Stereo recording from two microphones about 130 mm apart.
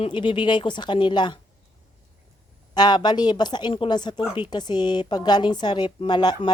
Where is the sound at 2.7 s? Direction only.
35° left (ahead or behind).